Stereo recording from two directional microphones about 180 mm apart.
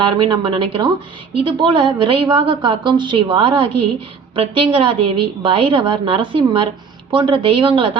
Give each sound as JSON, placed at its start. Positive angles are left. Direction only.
{"t": 0.0, "sound": "a woman's voice", "side_deg": -25}